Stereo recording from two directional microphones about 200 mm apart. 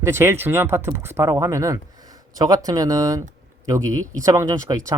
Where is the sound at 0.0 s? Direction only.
10° right (ahead or behind).